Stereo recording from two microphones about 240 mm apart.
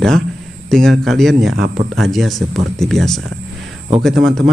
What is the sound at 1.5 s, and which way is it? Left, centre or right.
Speech, right.